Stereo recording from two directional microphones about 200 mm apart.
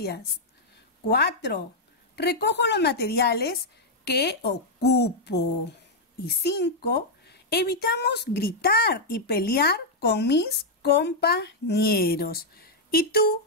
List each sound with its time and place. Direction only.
1.0 s a woman's voice: 55° left (ahead or behind)